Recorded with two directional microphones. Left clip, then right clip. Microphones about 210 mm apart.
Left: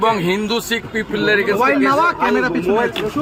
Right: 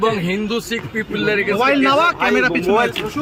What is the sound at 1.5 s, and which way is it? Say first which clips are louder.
Speech: even; 15° right (ahead or behind).